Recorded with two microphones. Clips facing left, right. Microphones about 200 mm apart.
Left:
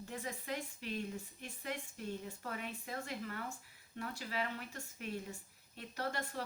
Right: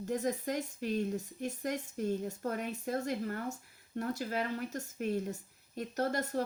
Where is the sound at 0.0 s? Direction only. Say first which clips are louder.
Right 11 dB; 40° right (ahead or behind).